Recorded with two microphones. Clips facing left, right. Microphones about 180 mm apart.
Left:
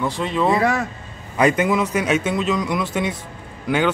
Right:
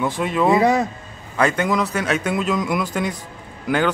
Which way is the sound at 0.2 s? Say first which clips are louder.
Right 1 dB; 5° right (ahead or behind).